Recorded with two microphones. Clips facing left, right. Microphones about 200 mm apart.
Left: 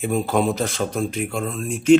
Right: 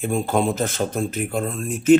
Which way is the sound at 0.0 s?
Centre (ahead or behind).